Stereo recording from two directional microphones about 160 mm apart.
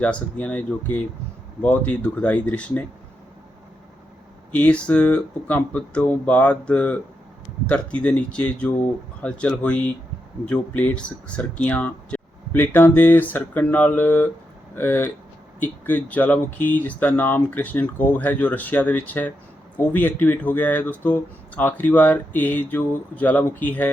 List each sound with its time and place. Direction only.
0.0 s speech: 10° left (ahead or behind)
4.5 s speech: 10° left (ahead or behind)